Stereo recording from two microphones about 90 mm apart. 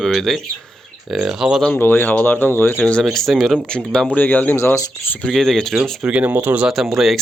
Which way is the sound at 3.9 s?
15° left (ahead or behind).